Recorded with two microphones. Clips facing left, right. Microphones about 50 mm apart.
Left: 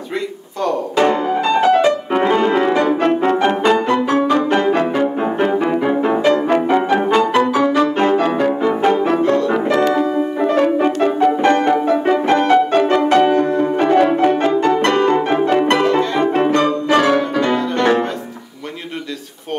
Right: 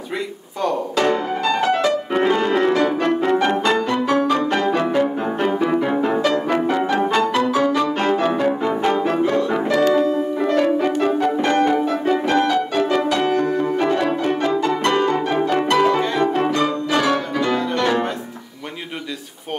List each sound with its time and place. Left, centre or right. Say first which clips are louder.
0.9 s music: left 6 dB; centre
6.2 s music: left 4 dB; left
6.9 s music: left 4 dB; centre
8.2 s music: left 3 dB; centre
9.2 s music: left 3 dB; centre
9.5 s music: left 2 dB; left